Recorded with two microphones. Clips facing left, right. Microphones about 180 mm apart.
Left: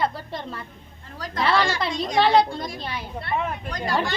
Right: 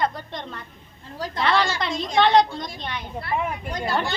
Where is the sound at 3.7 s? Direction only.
25° right (ahead or behind).